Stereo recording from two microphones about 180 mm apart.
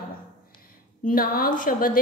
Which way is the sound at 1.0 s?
50° left (ahead or behind).